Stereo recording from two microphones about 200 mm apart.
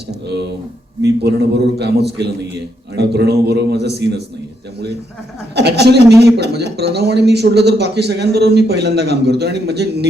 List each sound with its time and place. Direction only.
1.0 s a man's voice: 55° right (ahead or behind)
5.5 s a man's voice: 55° right (ahead or behind)